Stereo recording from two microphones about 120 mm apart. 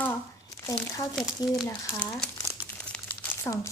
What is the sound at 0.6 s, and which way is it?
Speech, 30° left (ahead or behind).